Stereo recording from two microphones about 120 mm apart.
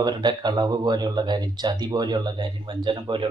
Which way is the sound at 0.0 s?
40° right (ahead or behind).